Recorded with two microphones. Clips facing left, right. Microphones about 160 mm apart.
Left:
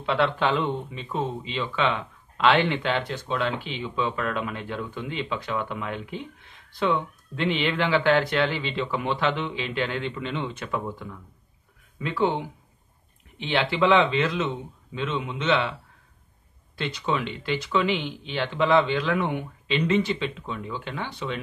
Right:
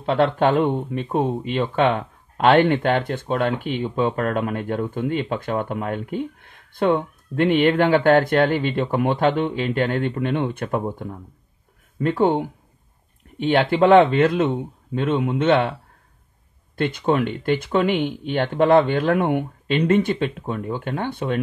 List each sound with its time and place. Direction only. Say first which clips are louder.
0.0 s speech: right 5 dB; 45° right (ahead or behind)
16.7 s speech: right 7 dB; 50° right (ahead or behind)